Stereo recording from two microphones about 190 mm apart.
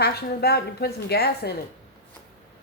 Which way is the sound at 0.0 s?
55° left (ahead or behind).